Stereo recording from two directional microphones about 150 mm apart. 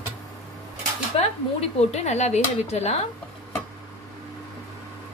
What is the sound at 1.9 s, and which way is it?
Speech, 45° left (ahead or behind).